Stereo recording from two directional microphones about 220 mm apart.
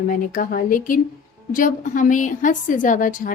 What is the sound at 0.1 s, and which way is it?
A woman's voice, 35° left (ahead or behind).